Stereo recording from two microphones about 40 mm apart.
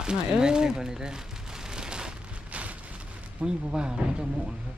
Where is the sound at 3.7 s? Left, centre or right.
Centre.